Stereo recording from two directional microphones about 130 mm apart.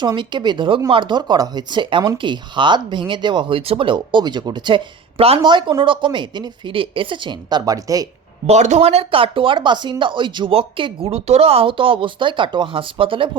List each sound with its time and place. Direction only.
0.0 s speech: 35° right (ahead or behind)
8.4 s speech: 60° right (ahead or behind); by 13.3 s 40° right (ahead or behind)